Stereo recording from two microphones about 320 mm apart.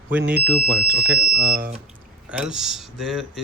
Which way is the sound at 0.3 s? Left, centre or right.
Centre.